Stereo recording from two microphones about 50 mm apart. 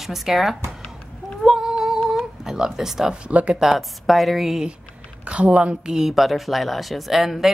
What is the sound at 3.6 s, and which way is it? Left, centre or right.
Speech, centre.